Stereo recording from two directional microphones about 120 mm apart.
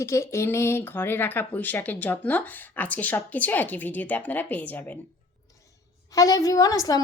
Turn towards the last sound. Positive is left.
turn(degrees=30)  # may be behind; listen again after turning